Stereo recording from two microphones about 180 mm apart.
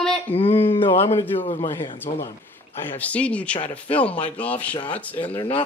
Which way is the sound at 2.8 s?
10° left (ahead or behind).